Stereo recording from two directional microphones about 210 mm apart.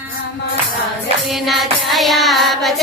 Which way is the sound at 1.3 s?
Centre (ahead or behind).